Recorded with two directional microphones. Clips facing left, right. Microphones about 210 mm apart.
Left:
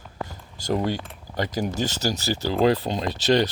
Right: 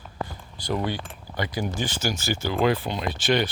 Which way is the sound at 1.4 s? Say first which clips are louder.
Left 3 dB; 40° left (ahead or behind).